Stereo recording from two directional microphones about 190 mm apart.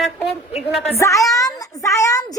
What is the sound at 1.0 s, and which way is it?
A woman's voice, 15° left (ahead or behind).